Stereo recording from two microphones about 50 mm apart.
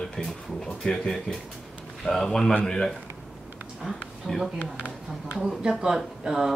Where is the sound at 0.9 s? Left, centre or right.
Centre.